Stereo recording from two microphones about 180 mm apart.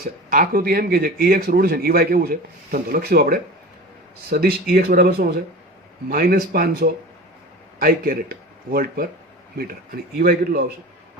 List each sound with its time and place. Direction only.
0.0 s speech: 50° right (ahead or behind)